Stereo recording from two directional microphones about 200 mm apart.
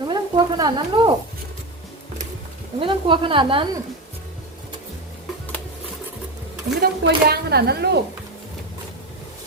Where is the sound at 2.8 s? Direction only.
25° right (ahead or behind).